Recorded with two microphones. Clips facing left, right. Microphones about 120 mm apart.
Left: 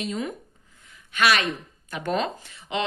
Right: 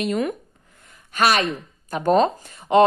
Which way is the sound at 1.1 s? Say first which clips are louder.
Right 3 dB; 40° right (ahead or behind).